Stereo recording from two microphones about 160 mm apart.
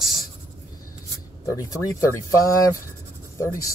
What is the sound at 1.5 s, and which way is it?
Speech, 20° left (ahead or behind).